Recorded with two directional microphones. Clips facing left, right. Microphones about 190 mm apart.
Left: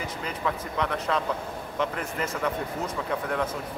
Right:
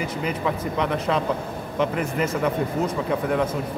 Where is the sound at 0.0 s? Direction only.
15° right (ahead or behind).